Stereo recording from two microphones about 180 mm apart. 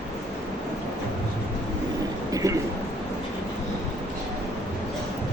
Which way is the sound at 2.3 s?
20° right (ahead or behind).